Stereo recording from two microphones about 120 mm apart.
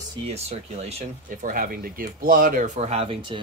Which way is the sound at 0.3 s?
60° right (ahead or behind).